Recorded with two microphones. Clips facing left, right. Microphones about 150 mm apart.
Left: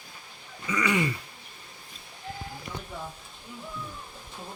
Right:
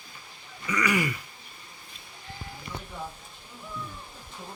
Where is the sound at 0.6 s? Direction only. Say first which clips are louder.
Even; 25° left (ahead or behind).